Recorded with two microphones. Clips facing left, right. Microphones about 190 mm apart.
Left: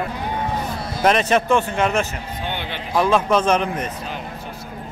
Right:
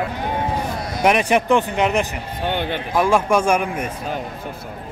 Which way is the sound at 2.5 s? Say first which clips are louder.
Right 7 dB; 50° right (ahead or behind).